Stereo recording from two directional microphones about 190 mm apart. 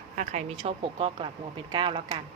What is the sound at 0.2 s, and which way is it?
Speech, 35° right (ahead or behind).